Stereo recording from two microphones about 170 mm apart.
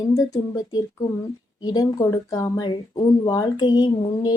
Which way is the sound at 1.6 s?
20° left (ahead or behind).